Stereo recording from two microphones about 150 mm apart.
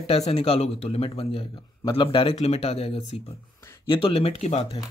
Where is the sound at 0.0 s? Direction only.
40° left (ahead or behind).